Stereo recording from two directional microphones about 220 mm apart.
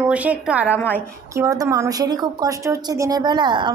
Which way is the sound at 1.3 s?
15° right (ahead or behind).